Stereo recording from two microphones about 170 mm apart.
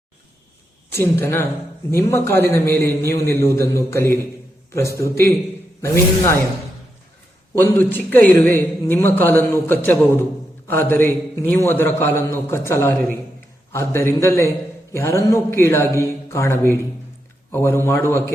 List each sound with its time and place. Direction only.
0.9 s a man's voice: 15° left (ahead or behind)
7.5 s a man's voice: 10° left (ahead or behind)